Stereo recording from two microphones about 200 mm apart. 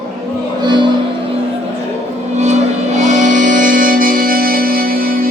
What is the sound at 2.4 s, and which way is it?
Music, 35° right (ahead or behind).